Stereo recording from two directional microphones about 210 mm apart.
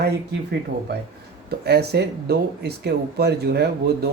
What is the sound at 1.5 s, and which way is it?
Speech, 50° right (ahead or behind).